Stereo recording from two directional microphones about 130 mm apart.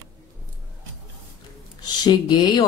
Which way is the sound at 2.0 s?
35° left (ahead or behind).